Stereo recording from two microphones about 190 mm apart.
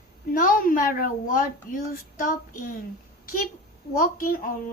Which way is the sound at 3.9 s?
50° left (ahead or behind).